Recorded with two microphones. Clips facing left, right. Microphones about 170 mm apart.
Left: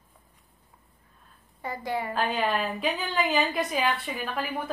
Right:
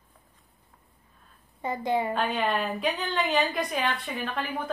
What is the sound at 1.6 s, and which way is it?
Speech, 20° right (ahead or behind).